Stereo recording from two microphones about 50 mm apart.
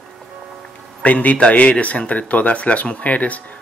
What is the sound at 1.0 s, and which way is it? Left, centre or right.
Speech, left.